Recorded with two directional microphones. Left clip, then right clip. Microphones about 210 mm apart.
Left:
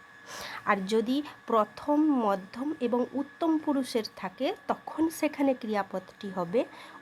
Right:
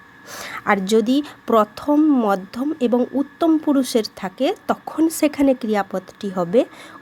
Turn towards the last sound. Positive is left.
turn(degrees=-15)  # may be behind; listen again after turning